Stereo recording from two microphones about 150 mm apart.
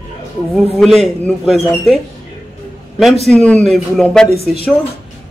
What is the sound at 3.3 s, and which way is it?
Speech, 5° left (ahead or behind).